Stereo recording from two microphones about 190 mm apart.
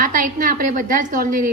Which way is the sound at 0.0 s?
45° right (ahead or behind).